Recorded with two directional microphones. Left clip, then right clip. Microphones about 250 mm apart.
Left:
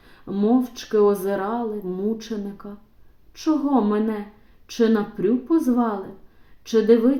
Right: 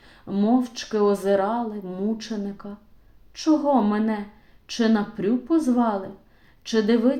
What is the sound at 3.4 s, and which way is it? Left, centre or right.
Speech, right.